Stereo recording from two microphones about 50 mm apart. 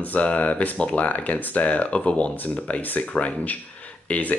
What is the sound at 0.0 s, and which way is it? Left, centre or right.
Speech, left.